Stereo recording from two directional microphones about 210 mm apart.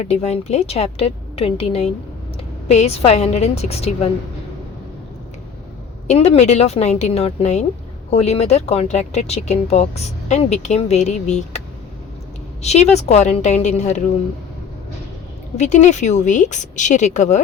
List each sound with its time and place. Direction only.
0.0 s speech: 30° left (ahead or behind)
6.1 s speech: 30° left (ahead or behind)
12.6 s speech: 30° left (ahead or behind)
15.5 s speech: 35° left (ahead or behind)